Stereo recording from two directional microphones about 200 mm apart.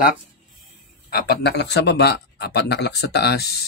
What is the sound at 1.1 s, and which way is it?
Speech, 55° left (ahead or behind).